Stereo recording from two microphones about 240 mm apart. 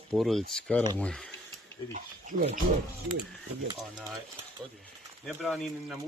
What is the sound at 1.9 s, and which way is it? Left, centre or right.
Speech, right.